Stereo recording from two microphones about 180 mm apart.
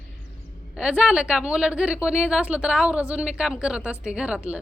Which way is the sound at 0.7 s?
5° right (ahead or behind).